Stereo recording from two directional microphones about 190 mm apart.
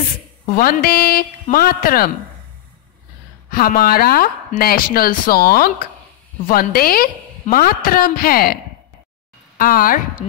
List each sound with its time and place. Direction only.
0.5 s speech: 50° left (ahead or behind)
3.4 s speech: 50° left (ahead or behind)
9.6 s speech: 50° left (ahead or behind)